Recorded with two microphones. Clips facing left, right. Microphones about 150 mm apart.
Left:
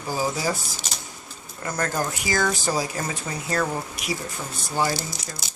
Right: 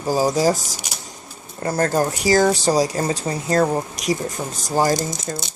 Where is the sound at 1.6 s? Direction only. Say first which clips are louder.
Right 7 dB; 35° right (ahead or behind).